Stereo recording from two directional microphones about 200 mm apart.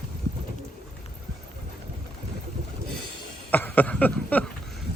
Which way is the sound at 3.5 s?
10° left (ahead or behind).